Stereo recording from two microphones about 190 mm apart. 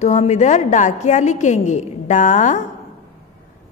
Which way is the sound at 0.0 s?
35° left (ahead or behind).